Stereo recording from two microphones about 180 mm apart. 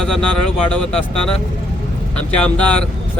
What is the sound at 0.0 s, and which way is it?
Speech, 5° left (ahead or behind).